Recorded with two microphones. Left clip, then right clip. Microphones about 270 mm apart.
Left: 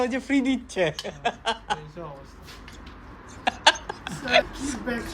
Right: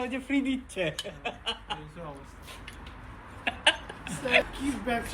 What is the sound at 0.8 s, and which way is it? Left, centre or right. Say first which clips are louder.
Speech: left 8 dB; centre.